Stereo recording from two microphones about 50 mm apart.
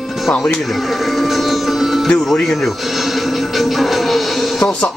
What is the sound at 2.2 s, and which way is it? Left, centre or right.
Speech, centre.